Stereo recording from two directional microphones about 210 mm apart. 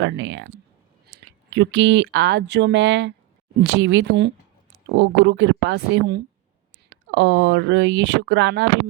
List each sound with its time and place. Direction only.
0.0 s speech: 60° right (ahead or behind)